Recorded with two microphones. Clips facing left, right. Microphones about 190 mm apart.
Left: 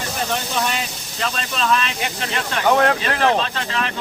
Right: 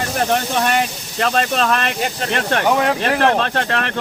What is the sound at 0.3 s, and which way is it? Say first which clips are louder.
Speech: right 6 dB; 60° right (ahead or behind).